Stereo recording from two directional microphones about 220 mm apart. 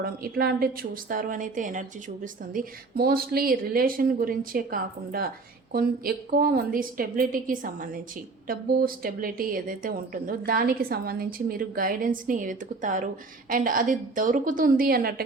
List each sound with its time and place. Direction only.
0.0 s a woman's voice: 45° right (ahead or behind)